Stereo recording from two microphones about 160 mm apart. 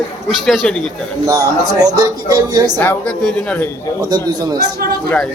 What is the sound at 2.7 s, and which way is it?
Speech, 10° left (ahead or behind).